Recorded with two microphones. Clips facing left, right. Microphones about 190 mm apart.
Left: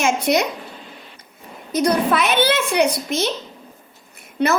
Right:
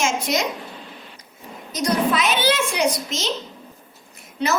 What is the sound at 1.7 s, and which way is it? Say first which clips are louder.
A woman's voice: left 3 dB; 60° left (ahead or behind).